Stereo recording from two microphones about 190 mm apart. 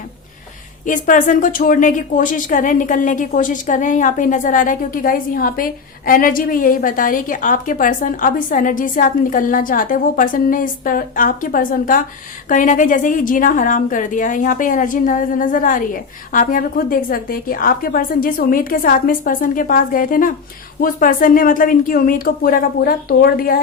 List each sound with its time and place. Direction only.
0.9 s a woman's voice: 45° left (ahead or behind)